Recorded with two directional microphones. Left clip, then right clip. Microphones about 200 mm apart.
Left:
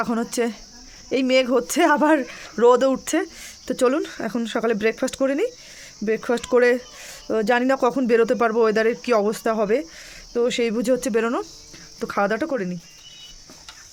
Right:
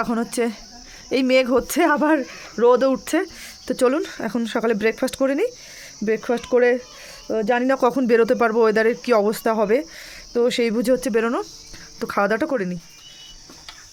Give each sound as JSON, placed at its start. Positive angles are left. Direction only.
{"t": 0.0, "sound": "speech", "side_deg": -5}
{"t": 7.7, "sound": "speech", "side_deg": -10}
{"t": 11.9, "sound": "speech", "side_deg": -20}